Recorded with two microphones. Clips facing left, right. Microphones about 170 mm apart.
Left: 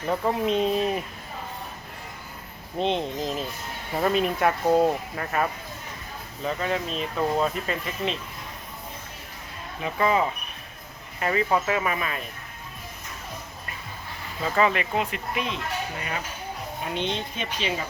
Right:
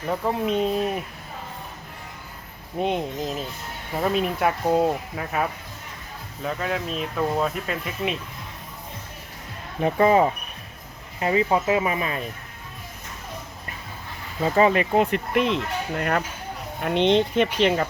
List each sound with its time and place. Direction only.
0.1 s speech: 5° right (ahead or behind)
2.7 s speech: 10° right (ahead or behind)
9.8 s speech: 40° right (ahead or behind)
11.2 s speech: 20° right (ahead or behind)
14.4 s speech: 30° right (ahead or behind)
15.1 s speech: 65° right (ahead or behind)
16.8 s speech: 75° right (ahead or behind)